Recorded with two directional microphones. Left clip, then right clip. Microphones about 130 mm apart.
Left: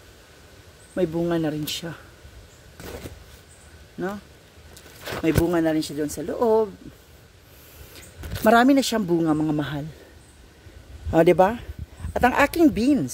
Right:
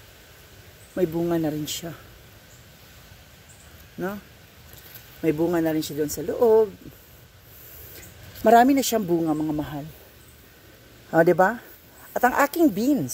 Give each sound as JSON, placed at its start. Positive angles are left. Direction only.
{"t": 0.9, "sound": "speech", "side_deg": 5}
{"t": 5.2, "sound": "speech", "side_deg": 5}
{"t": 8.5, "sound": "speech", "side_deg": 15}
{"t": 9.1, "sound": "speech", "side_deg": 50}
{"t": 9.4, "sound": "speech", "side_deg": 90}
{"t": 11.3, "sound": "a woman's voice", "side_deg": 25}